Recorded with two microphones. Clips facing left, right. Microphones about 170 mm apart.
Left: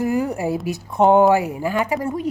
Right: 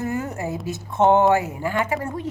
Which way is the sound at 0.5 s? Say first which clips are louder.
Left 5 dB; 20° right (ahead or behind).